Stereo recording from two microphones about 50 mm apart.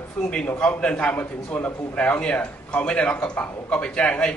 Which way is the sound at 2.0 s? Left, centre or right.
Left.